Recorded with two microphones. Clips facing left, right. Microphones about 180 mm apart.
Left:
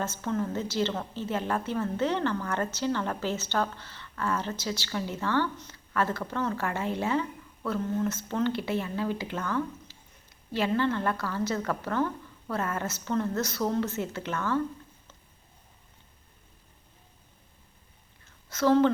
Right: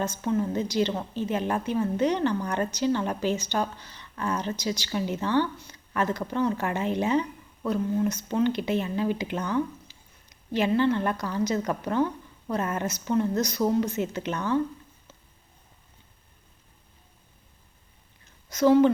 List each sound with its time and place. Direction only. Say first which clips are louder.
0.0 s a woman's voice: right 4 dB; 15° right (ahead or behind)
18.4 s a woman's voice: right 3 dB; 15° right (ahead or behind)